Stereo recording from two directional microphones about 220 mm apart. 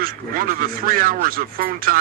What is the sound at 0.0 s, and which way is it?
A man's voice, 40° right (ahead or behind).